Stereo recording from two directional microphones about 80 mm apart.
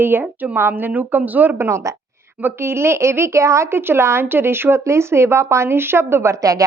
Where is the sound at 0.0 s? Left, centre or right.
Right.